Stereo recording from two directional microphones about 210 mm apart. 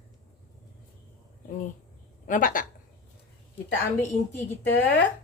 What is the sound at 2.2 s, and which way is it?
Speech, 40° left (ahead or behind).